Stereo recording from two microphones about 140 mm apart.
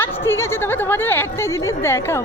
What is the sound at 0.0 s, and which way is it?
Speech, 15° left (ahead or behind).